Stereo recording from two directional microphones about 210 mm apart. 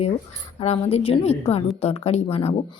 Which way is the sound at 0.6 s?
30° left (ahead or behind).